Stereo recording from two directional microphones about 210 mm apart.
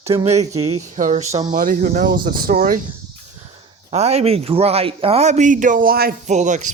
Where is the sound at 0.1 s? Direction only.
25° right (ahead or behind).